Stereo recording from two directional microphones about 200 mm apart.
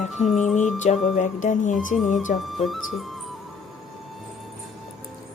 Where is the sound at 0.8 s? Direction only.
35° left (ahead or behind).